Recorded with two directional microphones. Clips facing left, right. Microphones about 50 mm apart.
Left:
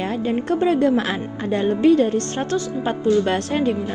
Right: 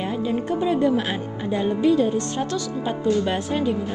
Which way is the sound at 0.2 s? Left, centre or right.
Left.